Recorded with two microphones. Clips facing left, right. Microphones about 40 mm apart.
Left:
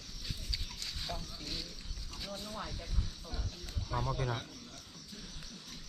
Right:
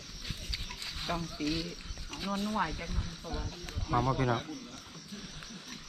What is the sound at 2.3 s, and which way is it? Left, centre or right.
Speech, right.